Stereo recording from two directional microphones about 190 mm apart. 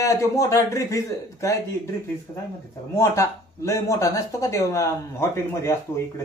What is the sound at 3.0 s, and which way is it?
Speech, 15° left (ahead or behind).